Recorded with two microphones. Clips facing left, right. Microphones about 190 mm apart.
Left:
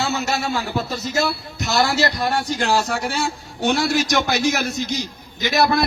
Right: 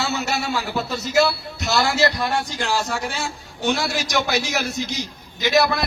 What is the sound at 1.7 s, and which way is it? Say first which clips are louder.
Speech: even; 50° left (ahead or behind).